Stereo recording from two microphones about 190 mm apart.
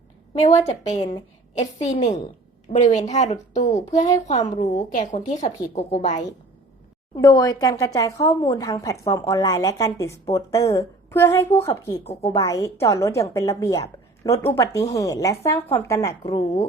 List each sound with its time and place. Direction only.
0.3 s a woman's voice: 35° left (ahead or behind)
7.1 s a woman's voice: 20° left (ahead or behind)
11.7 s a woman's voice: 30° left (ahead or behind)
12.3 s a woman's voice: 20° left (ahead or behind)
16.2 s a woman's voice: 35° left (ahead or behind)